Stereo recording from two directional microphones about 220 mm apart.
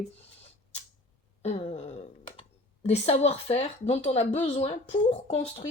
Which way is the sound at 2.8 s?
30° left (ahead or behind).